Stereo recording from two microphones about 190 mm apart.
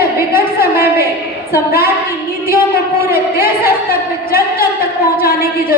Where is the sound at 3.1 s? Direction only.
50° left (ahead or behind).